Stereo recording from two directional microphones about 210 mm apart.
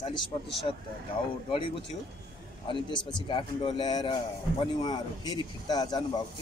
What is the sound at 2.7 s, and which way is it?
Speech, 20° left (ahead or behind).